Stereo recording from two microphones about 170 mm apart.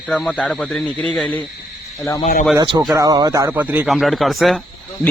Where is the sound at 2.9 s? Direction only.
20° right (ahead or behind); by 4.6 s centre (ahead or behind).